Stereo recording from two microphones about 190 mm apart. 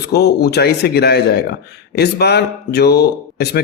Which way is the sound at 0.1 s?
60° left (ahead or behind).